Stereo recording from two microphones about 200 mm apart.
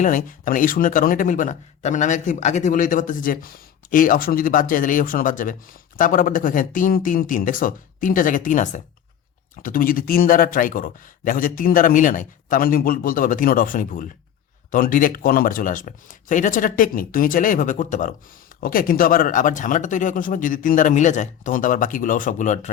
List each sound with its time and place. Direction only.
0.0 s speech: 40° left (ahead or behind)